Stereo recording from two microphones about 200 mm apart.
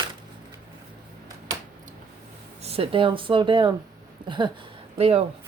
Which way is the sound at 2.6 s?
30° right (ahead or behind).